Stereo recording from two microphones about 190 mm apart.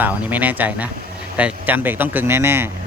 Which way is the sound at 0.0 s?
10° right (ahead or behind).